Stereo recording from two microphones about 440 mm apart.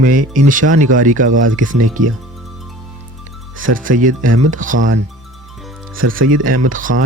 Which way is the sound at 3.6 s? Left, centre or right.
Centre.